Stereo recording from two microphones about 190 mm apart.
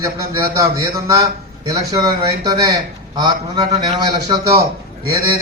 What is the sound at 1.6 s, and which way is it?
A man's voice, 20° right (ahead or behind).